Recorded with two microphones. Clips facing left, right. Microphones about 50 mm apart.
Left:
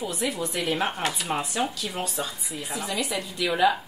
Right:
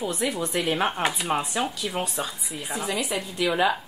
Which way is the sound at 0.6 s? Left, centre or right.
Right.